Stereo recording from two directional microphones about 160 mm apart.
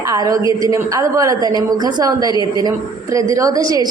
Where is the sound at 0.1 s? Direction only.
20° right (ahead or behind).